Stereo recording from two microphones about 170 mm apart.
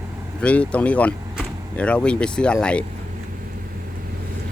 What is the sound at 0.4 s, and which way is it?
Speech, 5° left (ahead or behind).